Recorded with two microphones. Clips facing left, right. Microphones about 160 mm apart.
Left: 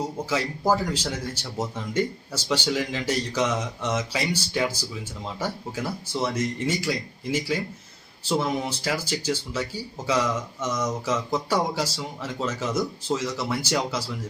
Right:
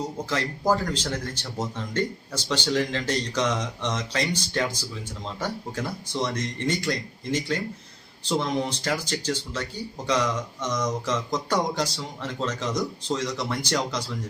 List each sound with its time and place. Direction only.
0.3 s speech: 10° left (ahead or behind)